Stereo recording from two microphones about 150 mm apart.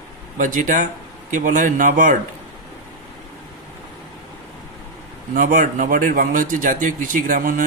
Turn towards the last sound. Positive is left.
turn(degrees=-65)  # may be behind; listen again after turning